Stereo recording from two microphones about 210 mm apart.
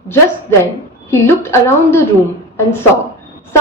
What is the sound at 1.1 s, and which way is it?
Speech, 10° left (ahead or behind).